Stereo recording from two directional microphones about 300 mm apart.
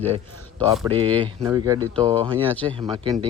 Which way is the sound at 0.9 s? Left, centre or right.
Centre.